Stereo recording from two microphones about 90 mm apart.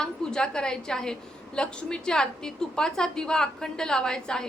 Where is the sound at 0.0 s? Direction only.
10° left (ahead or behind).